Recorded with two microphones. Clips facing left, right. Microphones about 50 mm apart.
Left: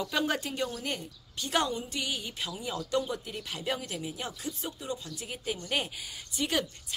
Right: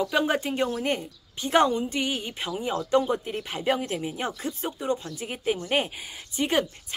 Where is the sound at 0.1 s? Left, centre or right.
Right.